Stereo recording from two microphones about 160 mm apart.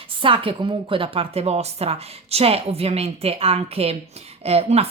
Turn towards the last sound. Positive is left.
turn(degrees=-40)  # may be behind; listen again after turning